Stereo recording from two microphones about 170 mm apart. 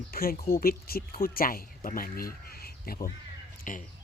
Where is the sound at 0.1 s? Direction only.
60° left (ahead or behind).